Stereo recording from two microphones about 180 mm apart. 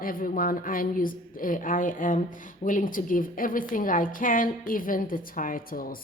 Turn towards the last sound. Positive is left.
turn(degrees=50)  # may be behind; listen again after turning